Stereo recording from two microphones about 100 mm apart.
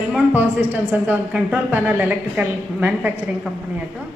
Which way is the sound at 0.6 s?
15° right (ahead or behind).